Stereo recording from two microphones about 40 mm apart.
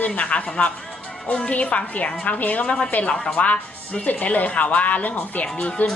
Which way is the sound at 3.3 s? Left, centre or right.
Left.